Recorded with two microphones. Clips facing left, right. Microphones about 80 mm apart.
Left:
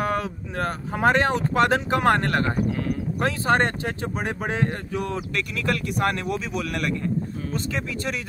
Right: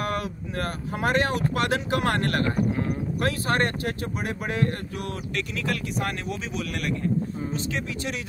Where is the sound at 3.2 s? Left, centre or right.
Left.